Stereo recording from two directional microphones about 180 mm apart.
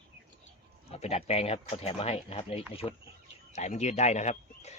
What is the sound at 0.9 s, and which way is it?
Speech, 35° left (ahead or behind).